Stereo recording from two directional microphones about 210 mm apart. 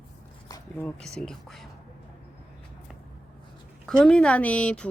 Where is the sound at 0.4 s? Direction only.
20° left (ahead or behind).